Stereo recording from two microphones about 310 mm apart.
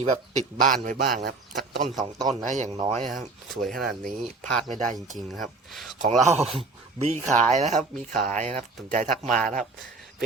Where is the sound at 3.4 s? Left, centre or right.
Centre.